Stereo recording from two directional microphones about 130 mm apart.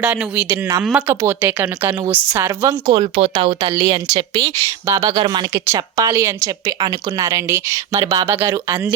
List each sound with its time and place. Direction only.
0.0 s a woman's voice: 10° right (ahead or behind)
2.8 s speech: 45° right (ahead or behind)
4.4 s a woman's voice: 25° right (ahead or behind)
5.0 s speech: 40° right (ahead or behind)
5.6 s a woman's voice: 20° right (ahead or behind)